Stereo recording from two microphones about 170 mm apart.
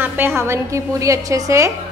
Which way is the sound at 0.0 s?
15° right (ahead or behind).